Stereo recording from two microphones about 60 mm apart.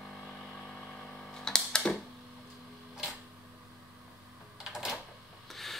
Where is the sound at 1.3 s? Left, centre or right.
Centre.